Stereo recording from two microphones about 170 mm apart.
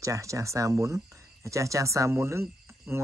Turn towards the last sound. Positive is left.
turn(degrees=-15)  # may be behind; listen again after turning